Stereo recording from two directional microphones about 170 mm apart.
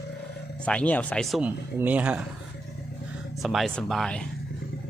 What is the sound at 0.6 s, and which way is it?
A man's voice, 5° left (ahead or behind).